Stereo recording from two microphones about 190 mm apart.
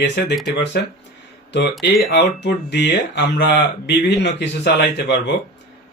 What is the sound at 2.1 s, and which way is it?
Speech, 65° left (ahead or behind).